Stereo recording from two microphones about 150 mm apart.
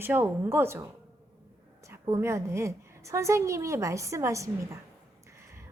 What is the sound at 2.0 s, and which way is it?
A woman's voice, 20° right (ahead or behind).